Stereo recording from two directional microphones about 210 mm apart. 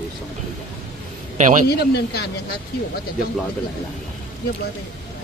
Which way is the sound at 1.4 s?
35° right (ahead or behind).